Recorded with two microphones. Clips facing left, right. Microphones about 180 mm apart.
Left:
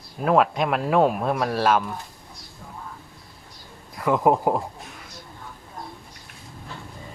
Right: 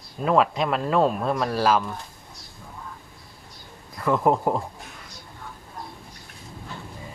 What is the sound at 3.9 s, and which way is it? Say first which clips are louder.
Speech: left 1 dB; 10° left (ahead or behind).